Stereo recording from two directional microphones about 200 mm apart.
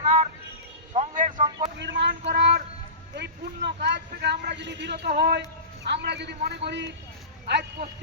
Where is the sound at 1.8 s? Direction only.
60° right (ahead or behind).